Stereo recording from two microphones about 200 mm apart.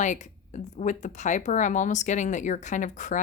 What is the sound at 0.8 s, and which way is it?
Speech, 35° left (ahead or behind).